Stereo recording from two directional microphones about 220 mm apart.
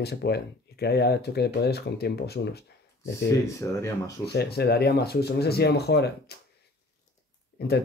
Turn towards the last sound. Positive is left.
turn(degrees=45)  # may be behind; listen again after turning